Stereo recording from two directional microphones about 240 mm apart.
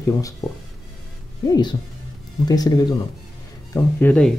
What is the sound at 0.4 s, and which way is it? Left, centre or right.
Speech, centre.